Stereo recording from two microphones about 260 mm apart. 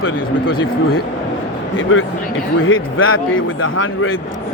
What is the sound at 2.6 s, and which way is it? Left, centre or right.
Speech, left.